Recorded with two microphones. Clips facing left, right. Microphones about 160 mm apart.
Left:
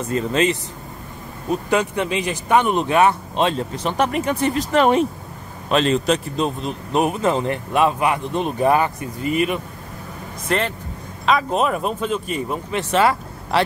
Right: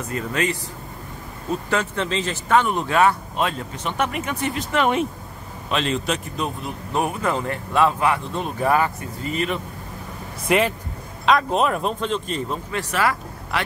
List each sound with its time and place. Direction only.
0.1 s speech: 25° left (ahead or behind)
10.5 s speech: 10° right (ahead or behind)
11.2 s speech: centre (ahead or behind)
12.7 s speech: 25° left (ahead or behind)